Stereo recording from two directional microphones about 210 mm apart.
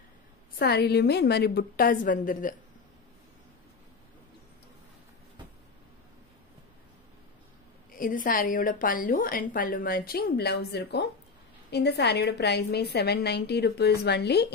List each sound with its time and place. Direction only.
0.6 s a woman's voice: 50° left (ahead or behind)
8.0 s a woman's voice: 40° left (ahead or behind)